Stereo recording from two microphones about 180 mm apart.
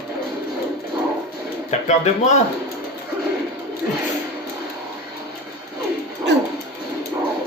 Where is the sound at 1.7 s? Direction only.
40° left (ahead or behind).